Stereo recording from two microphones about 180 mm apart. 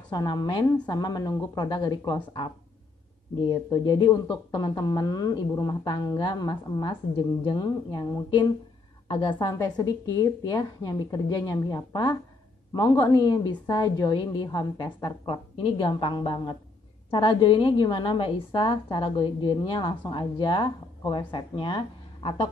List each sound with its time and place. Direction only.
0.1 s a woman's voice: 25° left (ahead or behind)